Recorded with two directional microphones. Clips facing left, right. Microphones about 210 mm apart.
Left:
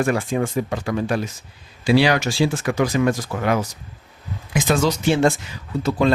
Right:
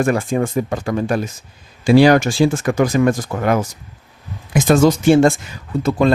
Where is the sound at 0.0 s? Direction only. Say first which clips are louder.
Right 3 dB; 45° right (ahead or behind).